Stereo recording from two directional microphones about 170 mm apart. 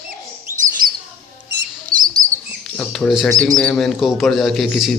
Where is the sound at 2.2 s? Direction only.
50° right (ahead or behind).